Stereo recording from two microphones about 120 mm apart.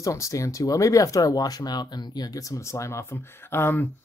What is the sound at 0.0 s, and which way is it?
Speech, 25° left (ahead or behind).